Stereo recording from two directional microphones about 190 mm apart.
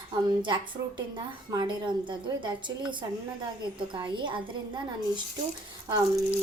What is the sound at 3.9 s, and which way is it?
Speech, 25° right (ahead or behind).